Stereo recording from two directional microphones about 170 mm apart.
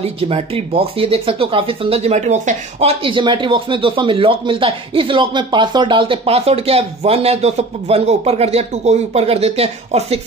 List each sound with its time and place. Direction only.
0.0 s speech: 35° right (ahead or behind)